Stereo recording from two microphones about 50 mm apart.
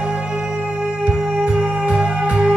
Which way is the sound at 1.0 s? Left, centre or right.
Right.